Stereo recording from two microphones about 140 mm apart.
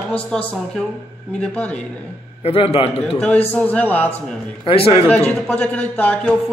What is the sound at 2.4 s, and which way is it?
Speech, 40° left (ahead or behind).